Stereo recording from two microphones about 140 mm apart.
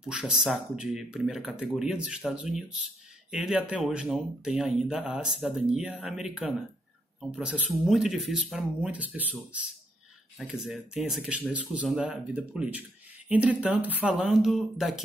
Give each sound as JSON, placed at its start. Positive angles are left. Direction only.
{"t": 0.0, "sound": "speech", "side_deg": -5}
{"t": 10.4, "sound": "speech", "side_deg": -5}